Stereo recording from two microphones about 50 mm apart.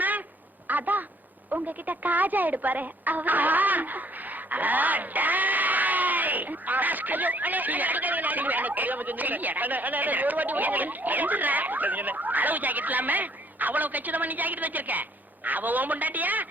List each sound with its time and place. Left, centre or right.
0.7 s a woman's voice: right